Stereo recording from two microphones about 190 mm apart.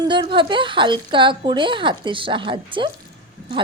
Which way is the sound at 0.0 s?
25° right (ahead or behind).